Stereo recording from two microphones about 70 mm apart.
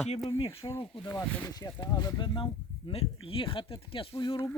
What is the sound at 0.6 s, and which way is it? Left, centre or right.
Speech, left.